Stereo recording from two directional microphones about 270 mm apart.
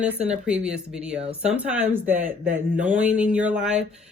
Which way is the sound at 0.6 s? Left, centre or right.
Centre.